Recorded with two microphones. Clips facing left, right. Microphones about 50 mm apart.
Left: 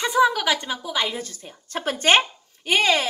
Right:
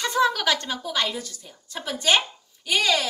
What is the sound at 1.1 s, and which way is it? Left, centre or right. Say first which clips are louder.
A woman's voice: left 2 dB; left.